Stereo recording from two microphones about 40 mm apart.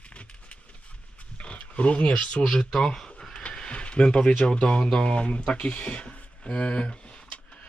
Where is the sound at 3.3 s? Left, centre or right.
Left.